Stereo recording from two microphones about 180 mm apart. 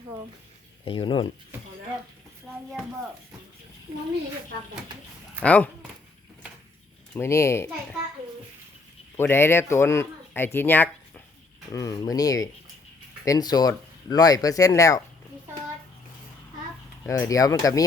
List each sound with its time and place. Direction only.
0.9 s speech: 30° left (ahead or behind)
5.4 s speech: 10° left (ahead or behind)
7.1 s speech: 15° left (ahead or behind)
9.1 s speech: 10° left (ahead or behind)
17.1 s speech: 20° left (ahead or behind)